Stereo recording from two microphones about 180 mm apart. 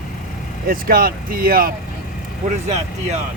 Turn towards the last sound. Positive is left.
turn(degrees=-40)  # may be behind; listen again after turning